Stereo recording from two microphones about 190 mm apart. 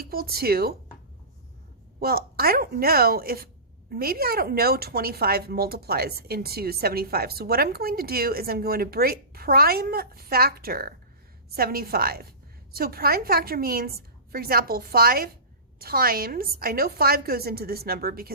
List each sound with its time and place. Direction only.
0.0 s speech: 50° right (ahead or behind)
2.0 s speech: 55° right (ahead or behind)